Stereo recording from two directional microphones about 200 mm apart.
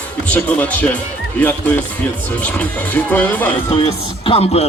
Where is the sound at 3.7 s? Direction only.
25° left (ahead or behind).